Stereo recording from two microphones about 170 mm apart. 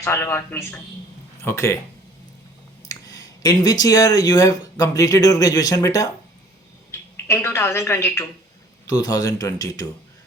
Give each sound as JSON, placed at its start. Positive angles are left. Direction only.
{"t": 0.0, "sound": "a woman's voice", "side_deg": 15}
{"t": 2.9, "sound": "speech", "side_deg": 20}
{"t": 7.3, "sound": "a woman's voice", "side_deg": 15}